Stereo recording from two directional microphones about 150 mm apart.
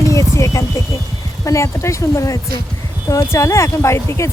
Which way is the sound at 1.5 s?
20° left (ahead or behind).